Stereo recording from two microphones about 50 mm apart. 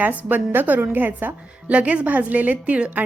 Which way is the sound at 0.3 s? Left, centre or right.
Right.